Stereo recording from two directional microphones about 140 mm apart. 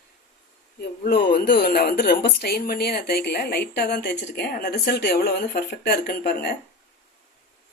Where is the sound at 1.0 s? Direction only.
90° left.